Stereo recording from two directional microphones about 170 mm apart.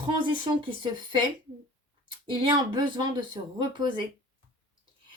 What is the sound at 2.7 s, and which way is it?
Speech, 25° right (ahead or behind).